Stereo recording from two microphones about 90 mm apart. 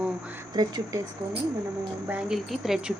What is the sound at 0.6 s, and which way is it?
Speech, 50° right (ahead or behind).